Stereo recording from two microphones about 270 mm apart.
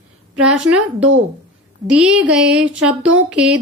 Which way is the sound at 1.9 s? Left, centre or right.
Centre.